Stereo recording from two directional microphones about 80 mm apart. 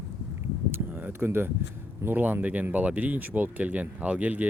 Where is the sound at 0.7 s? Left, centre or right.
Right.